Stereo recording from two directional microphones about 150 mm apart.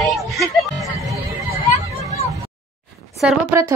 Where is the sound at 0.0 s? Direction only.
Centre (ahead or behind).